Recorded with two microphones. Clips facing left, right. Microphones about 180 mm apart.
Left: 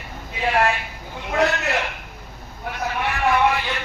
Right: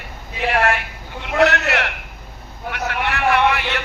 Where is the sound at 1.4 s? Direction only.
75° right (ahead or behind).